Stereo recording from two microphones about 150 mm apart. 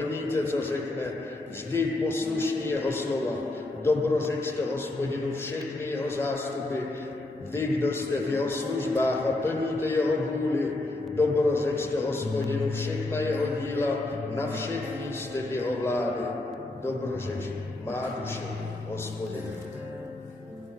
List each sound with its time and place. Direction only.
0.3 s a man's voice: 15° left (ahead or behind)
5.9 s a man's voice: 15° left (ahead or behind)
7.5 s a man's voice: 15° left (ahead or behind)
11.1 s a man's voice: 15° left (ahead or behind)
17.8 s a man's voice: 15° left (ahead or behind)